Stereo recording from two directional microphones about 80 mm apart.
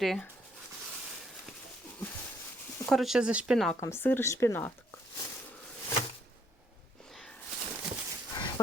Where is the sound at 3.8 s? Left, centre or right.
Left.